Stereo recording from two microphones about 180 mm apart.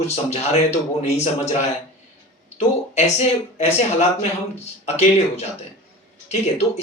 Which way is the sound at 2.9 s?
40° left (ahead or behind).